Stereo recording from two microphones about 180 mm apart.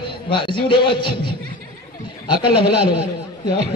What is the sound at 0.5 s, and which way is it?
Speech, 30° left (ahead or behind).